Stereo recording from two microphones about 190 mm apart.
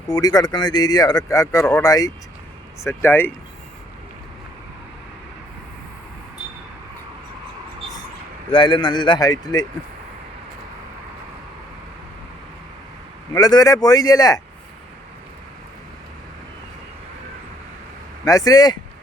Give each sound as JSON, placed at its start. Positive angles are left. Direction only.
{"t": 0.1, "sound": "speech", "side_deg": 20}
{"t": 8.4, "sound": "speech", "side_deg": 25}
{"t": 13.3, "sound": "speech", "side_deg": 20}
{"t": 18.3, "sound": "speech", "side_deg": 20}